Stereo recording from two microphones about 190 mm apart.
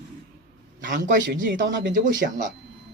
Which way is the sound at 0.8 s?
45° right (ahead or behind).